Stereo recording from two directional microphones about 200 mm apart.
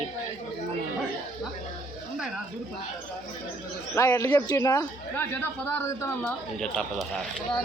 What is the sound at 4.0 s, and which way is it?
A man's voice, 15° left (ahead or behind).